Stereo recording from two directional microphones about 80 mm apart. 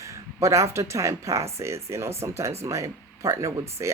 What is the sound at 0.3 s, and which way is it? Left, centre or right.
Speech, right.